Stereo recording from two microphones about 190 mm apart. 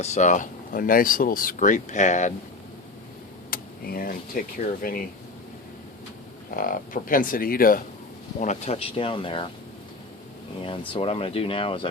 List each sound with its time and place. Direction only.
0.0 s speech: 40° left (ahead or behind)
3.5 s speech: 50° left (ahead or behind)
6.6 s speech: 45° left (ahead or behind)
8.4 s speech: 35° left (ahead or behind)
10.6 s speech: 25° left (ahead or behind)